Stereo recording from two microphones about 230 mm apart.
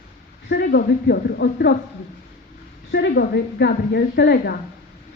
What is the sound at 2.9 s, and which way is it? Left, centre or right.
A woman's voice, left.